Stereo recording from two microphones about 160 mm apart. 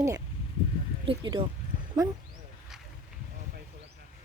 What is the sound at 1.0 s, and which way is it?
Speech, 30° right (ahead or behind).